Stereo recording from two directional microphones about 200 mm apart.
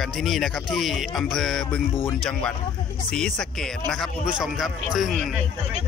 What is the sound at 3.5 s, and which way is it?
A man's voice, centre (ahead or behind).